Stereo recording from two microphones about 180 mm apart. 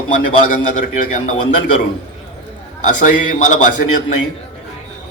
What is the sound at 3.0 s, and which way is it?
Speech, 45° left (ahead or behind).